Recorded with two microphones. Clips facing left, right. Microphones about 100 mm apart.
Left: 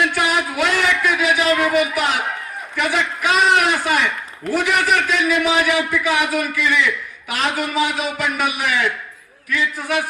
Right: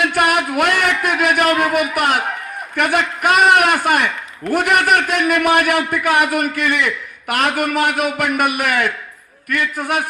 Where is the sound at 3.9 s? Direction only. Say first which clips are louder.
Right 2 dB; 55° right (ahead or behind).